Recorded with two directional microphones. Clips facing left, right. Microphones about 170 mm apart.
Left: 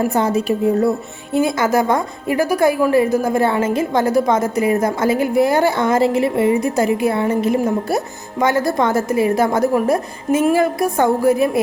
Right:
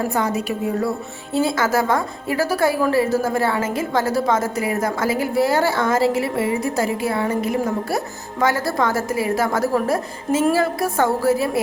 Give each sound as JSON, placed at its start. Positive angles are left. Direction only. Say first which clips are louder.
{"t": 0.1, "sound": "a woman's voice", "louder": "left 5 dB", "side_deg": 25}